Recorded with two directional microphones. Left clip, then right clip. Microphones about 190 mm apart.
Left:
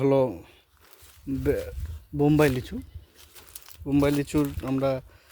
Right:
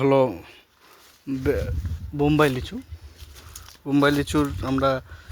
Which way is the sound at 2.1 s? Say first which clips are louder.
Right 2 dB; 20° left (ahead or behind).